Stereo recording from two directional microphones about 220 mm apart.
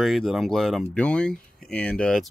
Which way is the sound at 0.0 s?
Centre (ahead or behind).